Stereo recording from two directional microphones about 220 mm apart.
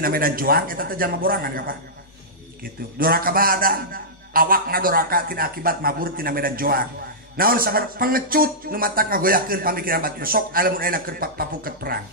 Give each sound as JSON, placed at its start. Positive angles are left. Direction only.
{"t": 0.0, "sound": "a man's voice", "side_deg": -40}